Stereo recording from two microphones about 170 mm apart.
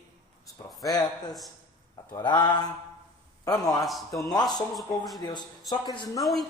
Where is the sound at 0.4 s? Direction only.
20° left (ahead or behind).